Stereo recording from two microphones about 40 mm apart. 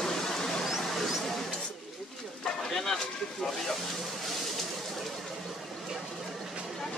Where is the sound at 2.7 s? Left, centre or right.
Centre.